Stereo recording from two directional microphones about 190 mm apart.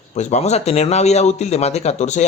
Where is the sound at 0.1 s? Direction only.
35° left (ahead or behind).